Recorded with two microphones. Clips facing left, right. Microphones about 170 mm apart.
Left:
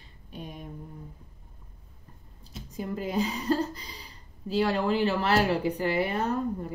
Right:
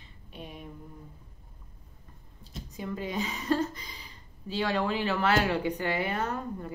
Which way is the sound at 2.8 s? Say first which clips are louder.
Left 4 dB; 35° left (ahead or behind).